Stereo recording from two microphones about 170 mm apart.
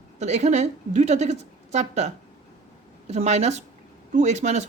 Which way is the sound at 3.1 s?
40° right (ahead or behind).